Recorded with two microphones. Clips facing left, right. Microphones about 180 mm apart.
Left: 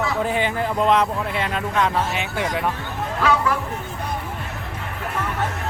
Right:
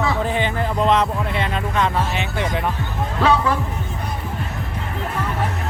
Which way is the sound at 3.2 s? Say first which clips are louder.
Right 3 dB; 30° right (ahead or behind).